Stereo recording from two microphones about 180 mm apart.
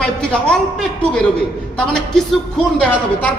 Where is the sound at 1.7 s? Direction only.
5° left (ahead or behind).